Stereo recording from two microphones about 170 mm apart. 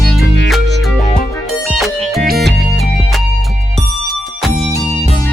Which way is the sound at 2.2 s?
70° right (ahead or behind).